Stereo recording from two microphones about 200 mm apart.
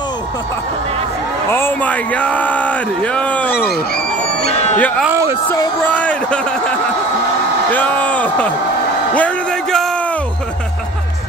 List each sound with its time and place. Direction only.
1.5 s speech: 10° left (ahead or behind)
4.4 s a sound: 30° left (ahead or behind)
4.7 s speech: 10° left (ahead or behind)
5.0 s speech: 10° right (ahead or behind)
5.5 s speech: 10° left (ahead or behind)
7.7 s speech: 5° left (ahead or behind)
9.1 s a sound: 5° left (ahead or behind)